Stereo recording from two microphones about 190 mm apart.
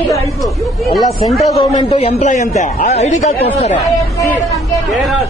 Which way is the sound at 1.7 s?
35° left (ahead or behind).